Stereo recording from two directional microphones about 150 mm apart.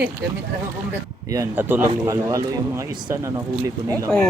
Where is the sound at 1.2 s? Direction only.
15° right (ahead or behind).